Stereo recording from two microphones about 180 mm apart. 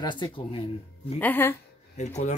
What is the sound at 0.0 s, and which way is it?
Speech, 25° left (ahead or behind).